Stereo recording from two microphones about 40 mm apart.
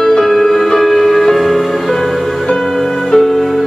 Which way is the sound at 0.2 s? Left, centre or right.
Centre.